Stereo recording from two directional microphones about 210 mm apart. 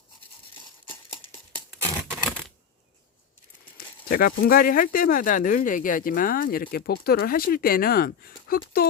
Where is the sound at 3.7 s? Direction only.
45° left (ahead or behind).